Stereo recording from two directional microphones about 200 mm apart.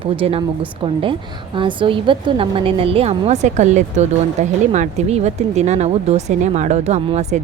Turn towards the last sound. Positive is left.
turn(degrees=-35)  # may be behind; listen again after turning